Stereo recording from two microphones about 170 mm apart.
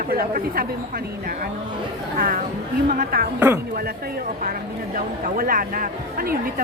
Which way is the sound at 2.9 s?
60° right (ahead or behind).